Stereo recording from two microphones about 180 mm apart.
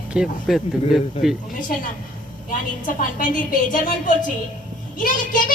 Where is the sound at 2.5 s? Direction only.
50° left (ahead or behind).